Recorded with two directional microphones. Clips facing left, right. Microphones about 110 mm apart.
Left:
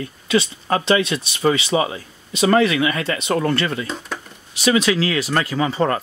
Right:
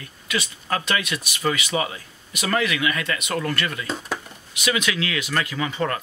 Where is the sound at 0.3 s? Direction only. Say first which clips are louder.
Left 7 dB; 30° left (ahead or behind).